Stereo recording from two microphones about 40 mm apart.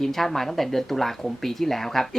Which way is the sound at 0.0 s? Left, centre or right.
Centre.